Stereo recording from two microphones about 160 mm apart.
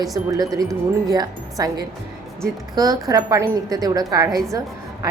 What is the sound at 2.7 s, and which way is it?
Speech, 20° right (ahead or behind).